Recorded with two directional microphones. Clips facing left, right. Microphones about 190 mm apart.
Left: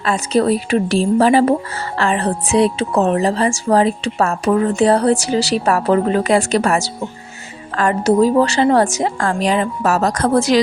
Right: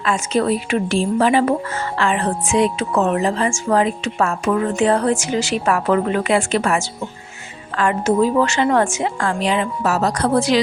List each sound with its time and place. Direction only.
0.0 s speech: 35° left (ahead or behind)